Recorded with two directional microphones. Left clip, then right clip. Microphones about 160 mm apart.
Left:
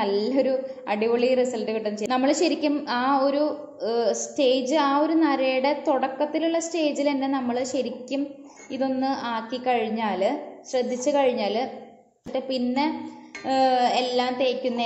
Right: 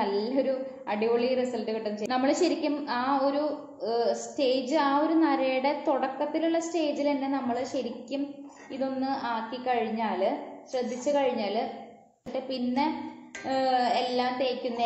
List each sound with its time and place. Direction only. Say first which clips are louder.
0.0 s a woman's voice: left 4 dB; 35° left (ahead or behind)